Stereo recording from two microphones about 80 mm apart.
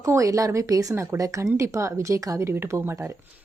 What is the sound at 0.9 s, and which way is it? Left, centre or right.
Speech, right.